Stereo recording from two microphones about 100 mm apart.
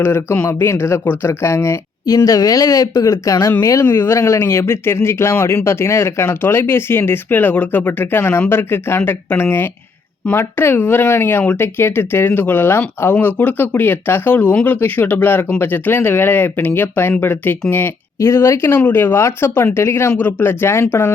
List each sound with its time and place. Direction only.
0.0 s speech: 20° left (ahead or behind)